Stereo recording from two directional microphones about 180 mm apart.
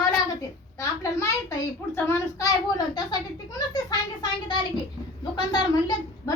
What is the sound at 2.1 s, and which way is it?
Child singing, 20° left (ahead or behind).